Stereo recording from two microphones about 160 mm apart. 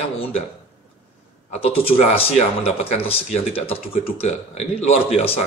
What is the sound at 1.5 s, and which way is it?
Speech, 35° left (ahead or behind).